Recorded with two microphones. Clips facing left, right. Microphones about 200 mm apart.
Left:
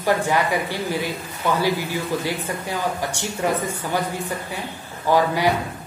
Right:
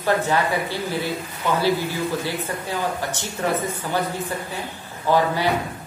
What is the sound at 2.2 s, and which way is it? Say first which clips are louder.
A man's voice: left 1 dB; 10° left (ahead or behind).